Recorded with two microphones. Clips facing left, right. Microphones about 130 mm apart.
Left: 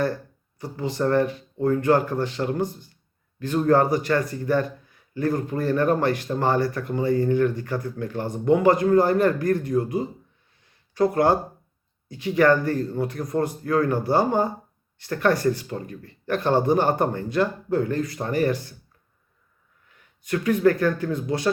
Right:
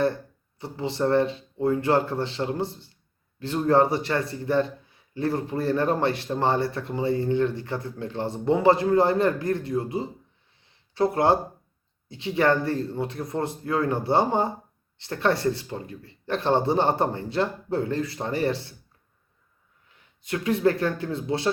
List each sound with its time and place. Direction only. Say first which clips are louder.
0.6 s a man's voice: left 1 dB; 25° right (ahead or behind)
10.7 s a sound: left 2 dB; 25° right (ahead or behind)
12.0 s a man's voice: left 4 dB; 25° right (ahead or behind)
20.2 s a man's voice: left 3 dB; 25° right (ahead or behind)